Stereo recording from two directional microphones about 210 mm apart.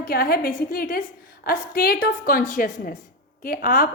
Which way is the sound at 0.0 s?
45° left (ahead or behind).